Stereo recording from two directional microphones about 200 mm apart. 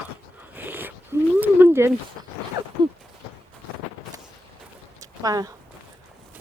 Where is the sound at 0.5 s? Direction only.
10° right (ahead or behind).